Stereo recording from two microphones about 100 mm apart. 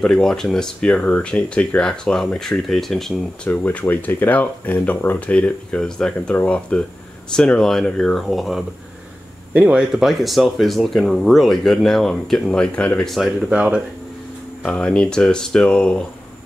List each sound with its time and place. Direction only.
0.0 s speech: 5° left (ahead or behind)
3.4 s speech: 20° left (ahead or behind); by 8.6 s centre (ahead or behind)
9.5 s speech: 15° right (ahead or behind); by 13.1 s 10° left (ahead or behind)
13.5 s speech: 10° right (ahead or behind)
14.6 s speech: 10° left (ahead or behind)